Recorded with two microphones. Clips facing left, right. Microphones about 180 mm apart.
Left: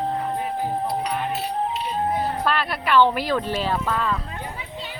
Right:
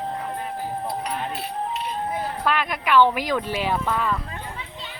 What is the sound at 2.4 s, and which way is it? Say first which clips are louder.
Speech: even; 10° right (ahead or behind).